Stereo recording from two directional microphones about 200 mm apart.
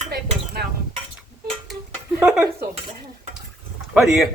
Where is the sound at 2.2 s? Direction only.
5° right (ahead or behind).